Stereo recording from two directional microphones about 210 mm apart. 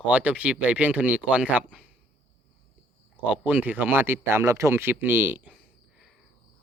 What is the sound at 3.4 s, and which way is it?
Speech, 10° right (ahead or behind).